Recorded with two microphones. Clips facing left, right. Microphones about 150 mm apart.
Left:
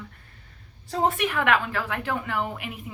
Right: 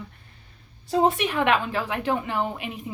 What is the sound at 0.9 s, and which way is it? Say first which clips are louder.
A woman's voice: right 3 dB; 20° right (ahead or behind).